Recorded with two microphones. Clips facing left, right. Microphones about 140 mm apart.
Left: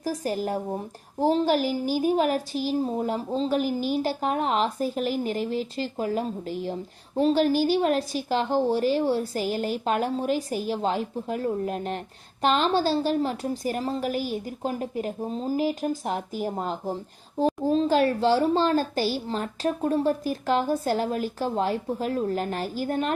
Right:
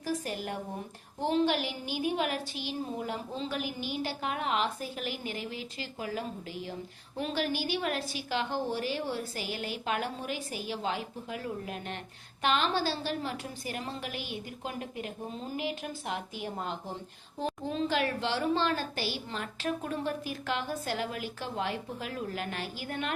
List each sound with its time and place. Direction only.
0.0 s a woman's voice: 40° left (ahead or behind)